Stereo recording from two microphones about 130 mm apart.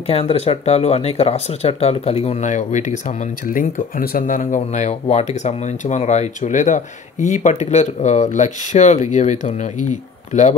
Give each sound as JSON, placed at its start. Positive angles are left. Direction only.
{"t": 0.0, "sound": "speech", "side_deg": 50}
{"t": 4.6, "sound": "speech", "side_deg": 65}